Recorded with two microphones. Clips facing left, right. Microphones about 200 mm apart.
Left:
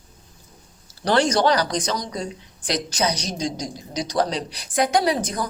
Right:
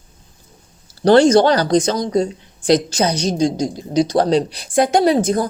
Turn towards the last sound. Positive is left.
turn(degrees=-25)  # may be behind; listen again after turning